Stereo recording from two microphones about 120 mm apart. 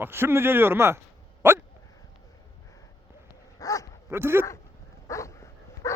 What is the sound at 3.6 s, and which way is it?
Dog, 30° left (ahead or behind).